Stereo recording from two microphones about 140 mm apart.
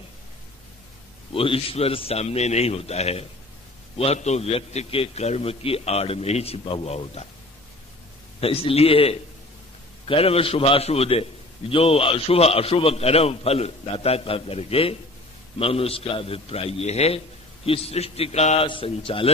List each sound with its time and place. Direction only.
1.3 s a man's voice: 40° left (ahead or behind)
8.4 s a man's voice: 40° left (ahead or behind)